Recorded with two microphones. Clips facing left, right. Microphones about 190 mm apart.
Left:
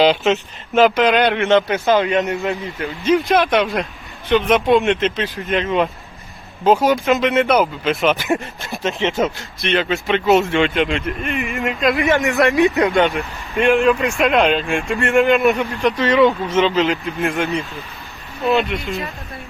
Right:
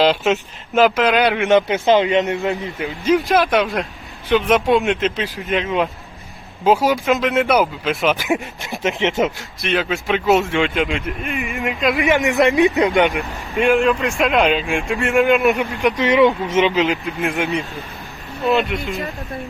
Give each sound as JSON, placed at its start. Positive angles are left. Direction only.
{"t": 0.0, "sound": "speech", "side_deg": 0}
{"t": 1.5, "sound": "a man's voice", "side_deg": -15}
{"t": 3.1, "sound": "speech", "side_deg": 0}
{"t": 8.6, "sound": "a man's voice", "side_deg": -15}
{"t": 9.1, "sound": "speech", "side_deg": 0}
{"t": 12.0, "sound": "a man's voice", "side_deg": -15}
{"t": 13.1, "sound": "speech", "side_deg": 0}
{"t": 15.7, "sound": "a man's voice", "side_deg": -15}
{"t": 16.7, "sound": "speech", "side_deg": 0}